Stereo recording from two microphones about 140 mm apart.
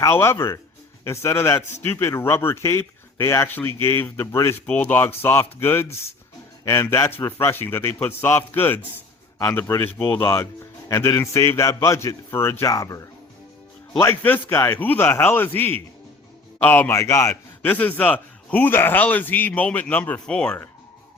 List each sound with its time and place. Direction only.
0.0 s a man's voice: 20° left (ahead or behind)